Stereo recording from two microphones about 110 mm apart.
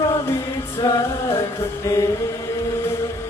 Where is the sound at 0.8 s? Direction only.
30° left (ahead or behind).